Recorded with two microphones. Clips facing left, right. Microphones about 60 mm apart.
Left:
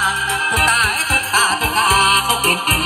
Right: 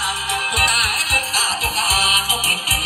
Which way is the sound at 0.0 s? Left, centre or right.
Left.